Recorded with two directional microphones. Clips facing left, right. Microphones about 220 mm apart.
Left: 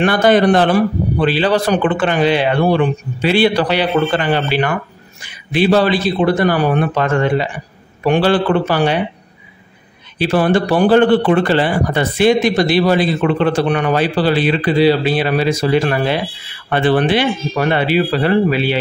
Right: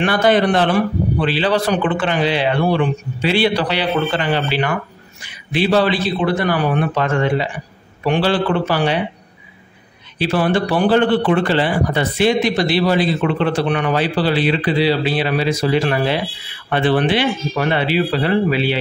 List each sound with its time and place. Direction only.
0.0 s a man's voice: 45° left (ahead or behind)
10.1 s a man's voice: 45° left (ahead or behind)